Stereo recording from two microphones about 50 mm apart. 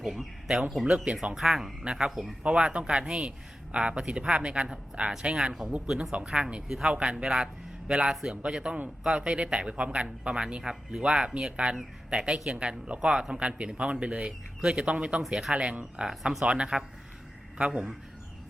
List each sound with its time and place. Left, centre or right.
0.0 s speech: centre
0.9 s speech: right
1.4 s speech: centre
1.8 s a man's voice: centre
6.9 s a man's voice: right
10.6 s a man's voice: centre
15.3 s a man's voice: centre
15.5 s speech: right
16.0 s a man's voice: centre